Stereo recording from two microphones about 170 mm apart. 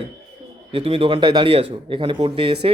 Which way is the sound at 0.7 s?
35° right (ahead or behind).